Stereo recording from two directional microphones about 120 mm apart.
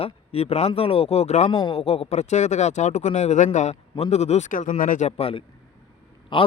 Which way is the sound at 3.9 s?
60° left (ahead or behind).